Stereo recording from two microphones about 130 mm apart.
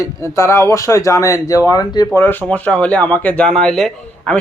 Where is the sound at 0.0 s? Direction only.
25° left (ahead or behind).